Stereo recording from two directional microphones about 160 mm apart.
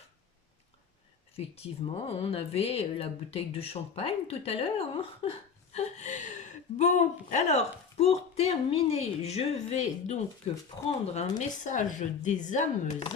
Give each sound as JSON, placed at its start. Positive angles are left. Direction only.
{"t": 1.4, "sound": "speech", "side_deg": 40}